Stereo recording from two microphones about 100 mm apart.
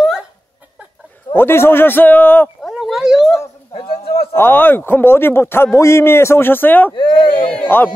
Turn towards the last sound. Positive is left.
turn(degrees=20)  # may be behind; listen again after turning